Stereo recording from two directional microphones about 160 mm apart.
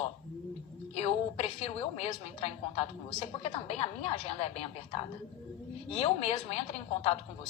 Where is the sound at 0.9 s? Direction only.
40° left (ahead or behind).